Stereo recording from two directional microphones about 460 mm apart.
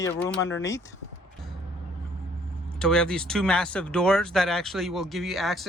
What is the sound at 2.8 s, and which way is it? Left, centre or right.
Speech, centre.